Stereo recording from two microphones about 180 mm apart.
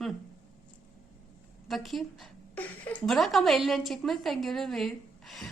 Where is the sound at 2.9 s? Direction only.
Centre (ahead or behind).